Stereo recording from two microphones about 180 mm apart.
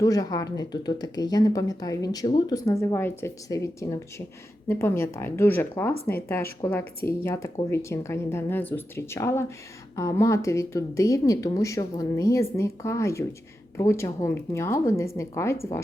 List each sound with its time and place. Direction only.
0.0 s speech: 20° left (ahead or behind)